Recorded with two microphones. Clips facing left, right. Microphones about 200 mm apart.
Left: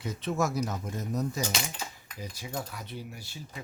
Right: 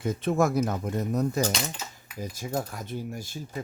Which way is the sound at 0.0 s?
50° right (ahead or behind).